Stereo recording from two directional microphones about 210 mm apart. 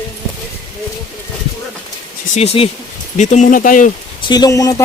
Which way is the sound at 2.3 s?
30° left (ahead or behind).